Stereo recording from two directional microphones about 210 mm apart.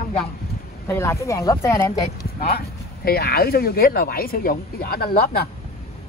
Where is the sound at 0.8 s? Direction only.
10° left (ahead or behind).